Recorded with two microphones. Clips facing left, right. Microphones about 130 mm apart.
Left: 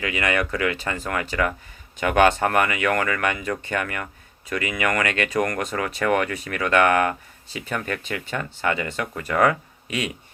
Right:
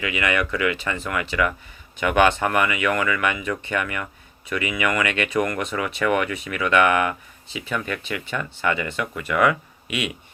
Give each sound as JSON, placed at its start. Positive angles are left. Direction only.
{"t": 0.0, "sound": "speech", "side_deg": 40}